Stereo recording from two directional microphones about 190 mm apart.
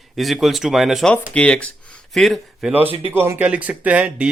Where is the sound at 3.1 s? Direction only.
15° right (ahead or behind).